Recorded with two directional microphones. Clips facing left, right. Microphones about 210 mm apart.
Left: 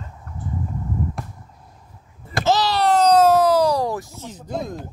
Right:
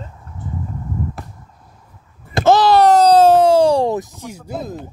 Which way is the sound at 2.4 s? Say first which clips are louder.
Right 8 dB; 55° right (ahead or behind).